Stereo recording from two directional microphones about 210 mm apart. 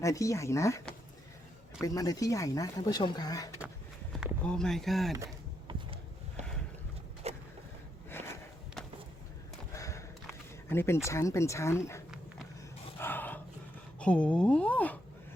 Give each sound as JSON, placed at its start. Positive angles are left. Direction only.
{"t": 0.0, "sound": "speech", "side_deg": 15}
{"t": 1.8, "sound": "speech", "side_deg": 15}
{"t": 4.2, "sound": "speech", "side_deg": 5}
{"t": 5.1, "sound": "a sound", "side_deg": -15}
{"t": 7.2, "sound": "vehicle", "side_deg": -30}
{"t": 9.7, "sound": "a sound", "side_deg": 15}
{"t": 10.7, "sound": "speech", "side_deg": 10}
{"t": 13.0, "sound": "a sound", "side_deg": 10}
{"t": 14.0, "sound": "speech", "side_deg": 5}